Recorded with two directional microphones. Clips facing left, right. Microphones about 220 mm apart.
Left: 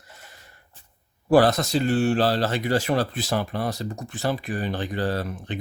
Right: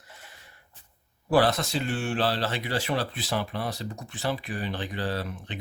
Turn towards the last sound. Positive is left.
turn(degrees=45)  # may be behind; listen again after turning